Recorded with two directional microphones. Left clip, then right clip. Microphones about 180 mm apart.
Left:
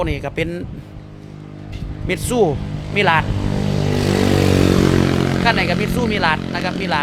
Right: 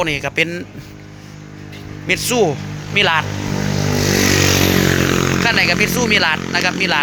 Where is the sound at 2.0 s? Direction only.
15° left (ahead or behind).